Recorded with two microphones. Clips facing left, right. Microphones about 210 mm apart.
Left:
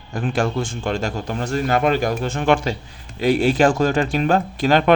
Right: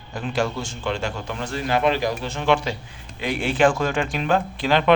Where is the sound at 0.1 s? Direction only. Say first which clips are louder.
Left 3 dB; 50° left (ahead or behind).